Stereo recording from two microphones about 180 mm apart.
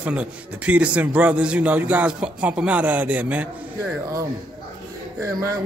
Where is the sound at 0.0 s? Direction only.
5° right (ahead or behind).